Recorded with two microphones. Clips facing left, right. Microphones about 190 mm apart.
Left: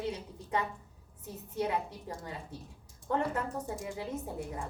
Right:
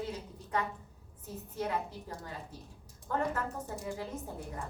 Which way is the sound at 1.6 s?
15° left (ahead or behind).